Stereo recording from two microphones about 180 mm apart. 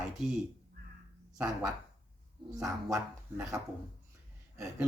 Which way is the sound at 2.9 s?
15° right (ahead or behind).